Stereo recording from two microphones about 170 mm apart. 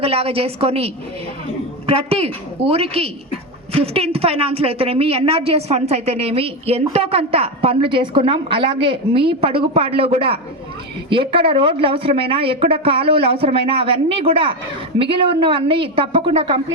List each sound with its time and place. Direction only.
0.0 s a woman's voice: 35° right (ahead or behind)
1.9 s a woman's voice: 35° right (ahead or behind)